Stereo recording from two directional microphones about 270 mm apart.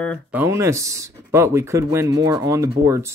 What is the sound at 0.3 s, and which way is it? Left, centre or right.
Speech, centre.